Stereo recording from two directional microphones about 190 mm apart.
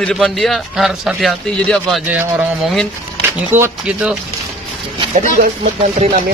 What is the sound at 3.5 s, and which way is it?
Speech, 10° right (ahead or behind).